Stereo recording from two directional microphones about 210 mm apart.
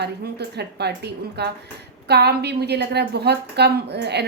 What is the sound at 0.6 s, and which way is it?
A woman's voice, 50° right (ahead or behind).